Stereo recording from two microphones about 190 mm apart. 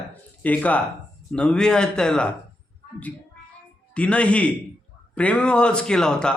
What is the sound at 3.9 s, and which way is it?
A man's voice, 5° left (ahead or behind).